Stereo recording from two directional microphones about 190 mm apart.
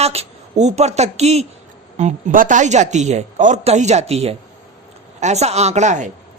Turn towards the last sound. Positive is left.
turn(degrees=-40)  # may be behind; listen again after turning